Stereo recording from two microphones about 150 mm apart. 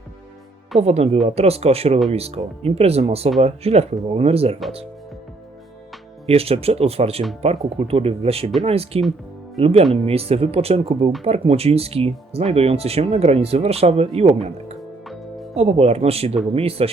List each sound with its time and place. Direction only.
0.8 s speech: 45° right (ahead or behind)
6.2 s speech: 40° right (ahead or behind)